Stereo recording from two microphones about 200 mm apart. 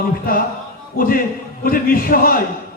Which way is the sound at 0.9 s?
45° left (ahead or behind).